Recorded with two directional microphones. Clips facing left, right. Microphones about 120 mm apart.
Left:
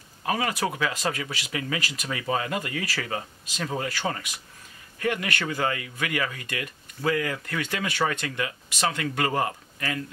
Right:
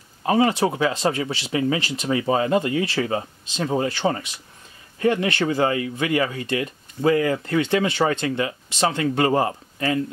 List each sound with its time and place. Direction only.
0.2 s speech: 25° right (ahead or behind)